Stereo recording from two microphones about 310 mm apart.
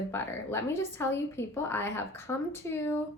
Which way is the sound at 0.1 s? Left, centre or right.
Centre.